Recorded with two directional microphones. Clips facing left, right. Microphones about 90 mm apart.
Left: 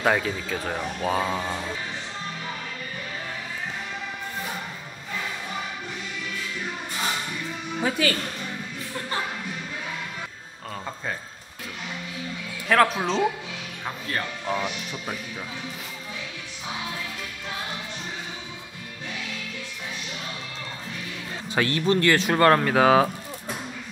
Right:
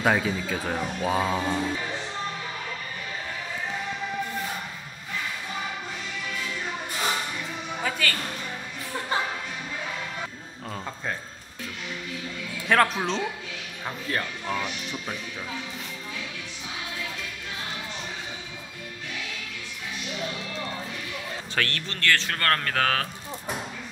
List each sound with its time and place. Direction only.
0.0 s a man's voice: centre (ahead or behind)
7.8 s a woman's voice: 10° left (ahead or behind)
12.6 s a man's voice: centre (ahead or behind)
21.5 s speech: 15° left (ahead or behind)